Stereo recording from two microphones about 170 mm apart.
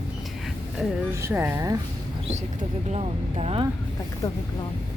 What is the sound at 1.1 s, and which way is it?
Speech, 15° right (ahead or behind).